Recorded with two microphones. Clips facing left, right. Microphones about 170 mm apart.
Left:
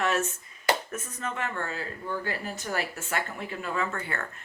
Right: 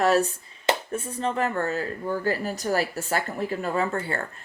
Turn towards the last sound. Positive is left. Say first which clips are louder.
# right 5 dB
turn(degrees=-30)  # may be behind; listen again after turning